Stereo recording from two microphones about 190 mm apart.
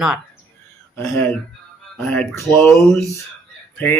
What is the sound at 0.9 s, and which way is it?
Speech, 10° left (ahead or behind).